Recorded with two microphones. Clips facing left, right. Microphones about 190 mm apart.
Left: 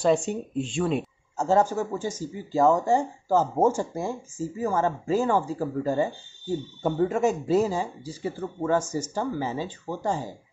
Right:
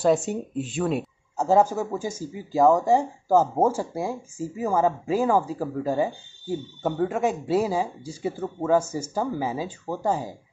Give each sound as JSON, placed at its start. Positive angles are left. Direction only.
{"t": 0.0, "sound": "speech", "side_deg": -5}